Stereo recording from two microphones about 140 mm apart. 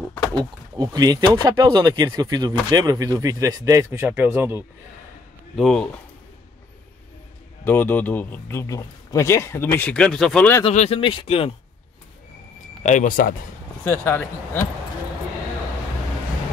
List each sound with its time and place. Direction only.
0.4 s speech: 30° right (ahead or behind)
5.6 s speech: 5° left (ahead or behind)
7.6 s speech: 15° left (ahead or behind)
10.7 s speech: 55° left (ahead or behind)
11.0 s speech: 40° left (ahead or behind)
12.8 s speech: 65° left (ahead or behind)
13.8 s speech: 15° left (ahead or behind)